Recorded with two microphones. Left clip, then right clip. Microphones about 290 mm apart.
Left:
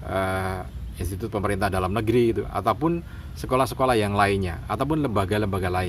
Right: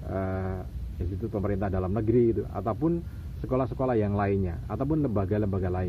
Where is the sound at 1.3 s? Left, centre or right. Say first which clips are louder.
Left 6 dB; left.